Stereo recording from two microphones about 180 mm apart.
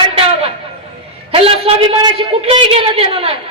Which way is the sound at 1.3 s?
30° right (ahead or behind).